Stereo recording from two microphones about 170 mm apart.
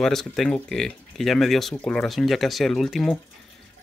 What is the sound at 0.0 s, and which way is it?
Speech, centre (ahead or behind).